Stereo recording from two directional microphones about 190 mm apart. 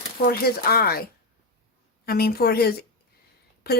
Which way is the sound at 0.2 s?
55° left (ahead or behind).